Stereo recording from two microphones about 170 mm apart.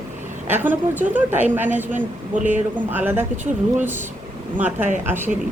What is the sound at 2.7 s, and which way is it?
A woman's voice, 10° right (ahead or behind).